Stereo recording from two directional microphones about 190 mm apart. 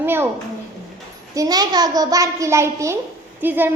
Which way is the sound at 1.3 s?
20° right (ahead or behind).